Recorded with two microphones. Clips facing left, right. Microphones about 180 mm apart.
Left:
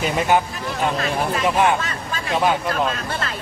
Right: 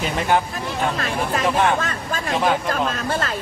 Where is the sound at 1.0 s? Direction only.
50° right (ahead or behind).